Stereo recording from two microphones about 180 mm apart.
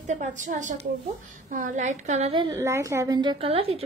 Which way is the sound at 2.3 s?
20° right (ahead or behind).